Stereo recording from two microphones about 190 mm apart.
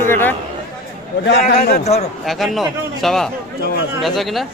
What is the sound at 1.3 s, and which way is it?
Speech, 55° left (ahead or behind).